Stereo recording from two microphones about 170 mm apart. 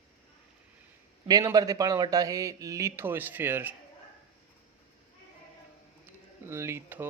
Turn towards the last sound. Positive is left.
turn(degrees=-15)  # may be behind; listen again after turning